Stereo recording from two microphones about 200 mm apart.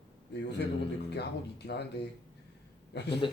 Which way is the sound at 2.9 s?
60° left (ahead or behind).